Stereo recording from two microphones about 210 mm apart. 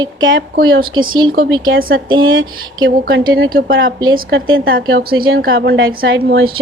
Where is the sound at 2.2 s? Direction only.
70° right (ahead or behind).